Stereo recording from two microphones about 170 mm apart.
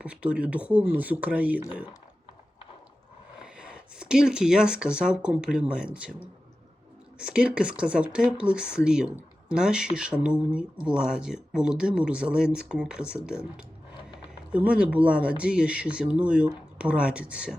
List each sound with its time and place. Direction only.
0.0 s speech: 5° right (ahead or behind)
3.4 s speech: 5° right (ahead or behind)
7.2 s speech: 5° right (ahead or behind)